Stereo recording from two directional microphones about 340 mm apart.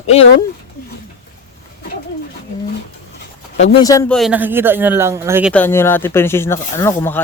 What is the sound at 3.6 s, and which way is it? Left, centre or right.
Speech, centre.